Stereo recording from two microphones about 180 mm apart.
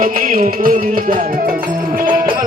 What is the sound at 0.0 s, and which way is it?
Music, 50° right (ahead or behind).